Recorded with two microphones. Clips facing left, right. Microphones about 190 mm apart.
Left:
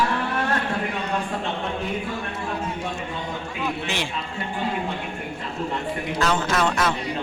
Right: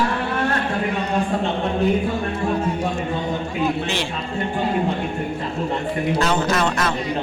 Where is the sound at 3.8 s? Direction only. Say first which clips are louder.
Right 3 dB; 15° left (ahead or behind).